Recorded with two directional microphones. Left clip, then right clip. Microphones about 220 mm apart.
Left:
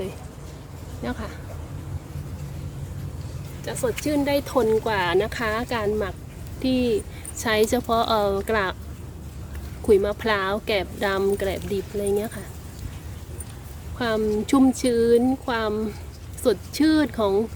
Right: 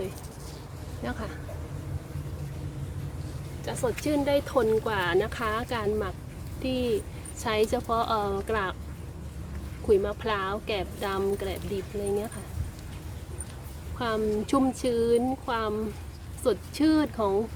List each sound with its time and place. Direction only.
1.0 s speech: 5° left (ahead or behind)
3.7 s speech: 5° left (ahead or behind)
9.8 s speech: 25° left (ahead or behind)
14.0 s speech: 15° left (ahead or behind)